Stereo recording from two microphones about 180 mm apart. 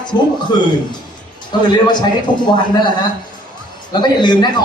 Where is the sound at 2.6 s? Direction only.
25° left (ahead or behind).